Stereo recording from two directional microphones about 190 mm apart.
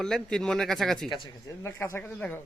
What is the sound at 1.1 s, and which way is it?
Speech, 25° left (ahead or behind).